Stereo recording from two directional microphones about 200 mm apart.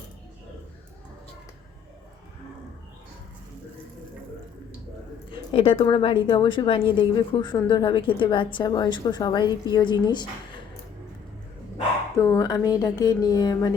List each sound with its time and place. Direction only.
5.3 s a woman's voice: 25° left (ahead or behind)
12.1 s a woman's voice: 15° left (ahead or behind)